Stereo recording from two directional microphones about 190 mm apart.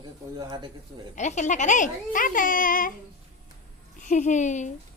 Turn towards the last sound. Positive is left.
turn(degrees=40)  # may be behind; listen again after turning